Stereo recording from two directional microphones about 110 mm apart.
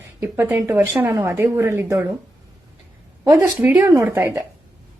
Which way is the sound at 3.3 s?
10° right (ahead or behind).